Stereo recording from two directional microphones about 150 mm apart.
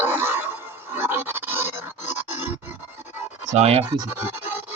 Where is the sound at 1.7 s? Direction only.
50° left (ahead or behind).